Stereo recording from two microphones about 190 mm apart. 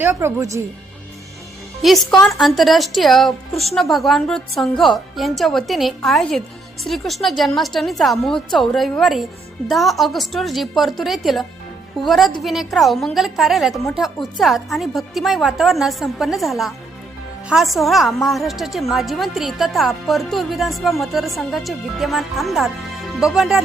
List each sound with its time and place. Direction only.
0.0 s speech: 15° right (ahead or behind)
1.8 s a woman's voice: centre (ahead or behind)